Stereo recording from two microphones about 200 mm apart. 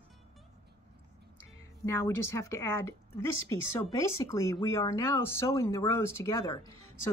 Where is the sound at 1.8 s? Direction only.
10° left (ahead or behind).